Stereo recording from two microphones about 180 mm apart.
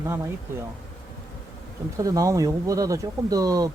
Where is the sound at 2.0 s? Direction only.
20° right (ahead or behind).